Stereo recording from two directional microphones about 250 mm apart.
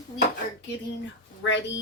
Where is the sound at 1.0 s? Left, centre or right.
Left.